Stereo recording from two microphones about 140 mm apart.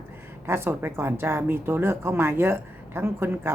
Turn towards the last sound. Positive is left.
turn(degrees=-15)  # may be behind; listen again after turning